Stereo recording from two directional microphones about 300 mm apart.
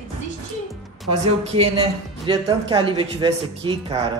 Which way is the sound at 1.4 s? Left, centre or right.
Centre.